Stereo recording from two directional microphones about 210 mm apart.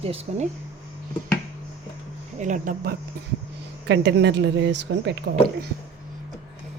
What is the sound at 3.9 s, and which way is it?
Speech, 55° right (ahead or behind).